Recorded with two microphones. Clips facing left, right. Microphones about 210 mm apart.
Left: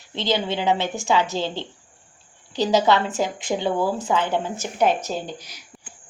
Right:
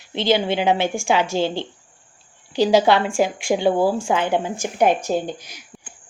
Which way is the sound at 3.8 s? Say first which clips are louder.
Right 4 dB; 30° right (ahead or behind).